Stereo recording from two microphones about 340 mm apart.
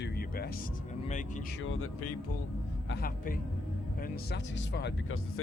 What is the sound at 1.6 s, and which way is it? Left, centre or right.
Speech, left.